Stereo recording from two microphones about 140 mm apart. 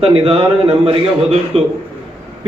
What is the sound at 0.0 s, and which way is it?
A man's voice, 40° right (ahead or behind).